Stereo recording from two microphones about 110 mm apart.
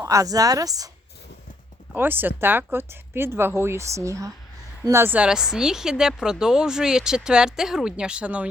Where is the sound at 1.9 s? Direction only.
20° right (ahead or behind).